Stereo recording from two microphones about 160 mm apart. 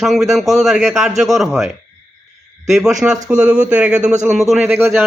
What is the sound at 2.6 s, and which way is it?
A man's voice, centre (ahead or behind).